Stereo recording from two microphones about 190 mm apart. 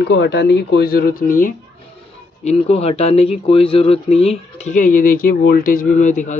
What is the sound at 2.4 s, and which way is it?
Speech, 35° left (ahead or behind).